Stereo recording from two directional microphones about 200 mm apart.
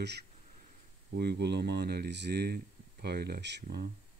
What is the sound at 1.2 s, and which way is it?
Speech, 55° right (ahead or behind).